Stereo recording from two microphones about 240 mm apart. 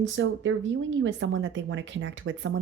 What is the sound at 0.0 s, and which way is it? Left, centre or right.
Speech, right.